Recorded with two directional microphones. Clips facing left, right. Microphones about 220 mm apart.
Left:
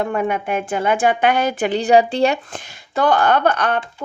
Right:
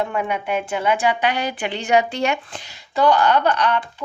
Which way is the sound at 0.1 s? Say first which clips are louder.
Left 3 dB; 45° left (ahead or behind).